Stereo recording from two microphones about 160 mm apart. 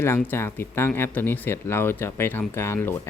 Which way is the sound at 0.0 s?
15° left (ahead or behind).